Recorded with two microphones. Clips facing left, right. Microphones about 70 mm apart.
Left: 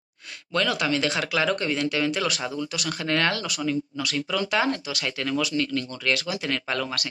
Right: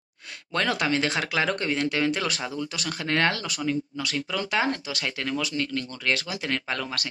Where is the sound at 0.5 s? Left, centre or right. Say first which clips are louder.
Left 1 dB; right.